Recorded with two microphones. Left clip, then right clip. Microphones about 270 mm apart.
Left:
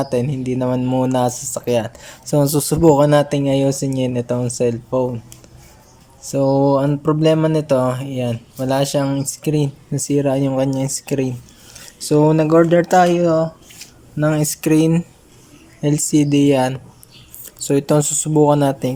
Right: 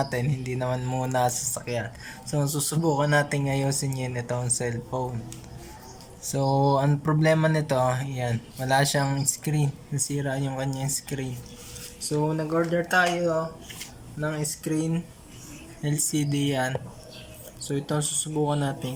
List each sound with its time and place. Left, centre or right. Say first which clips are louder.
0.0 s speech: left 9 dB; centre
6.2 s speech: left 8 dB; centre
11.9 s speech: left 13 dB; left
14.2 s speech: left 12 dB; left